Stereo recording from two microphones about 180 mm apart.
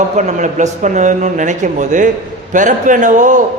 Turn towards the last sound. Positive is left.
turn(degrees=-45)  # may be behind; listen again after turning